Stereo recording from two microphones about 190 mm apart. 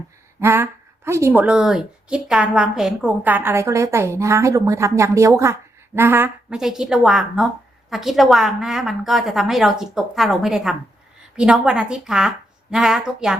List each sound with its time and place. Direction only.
0.3 s a woman's voice: 10° right (ahead or behind)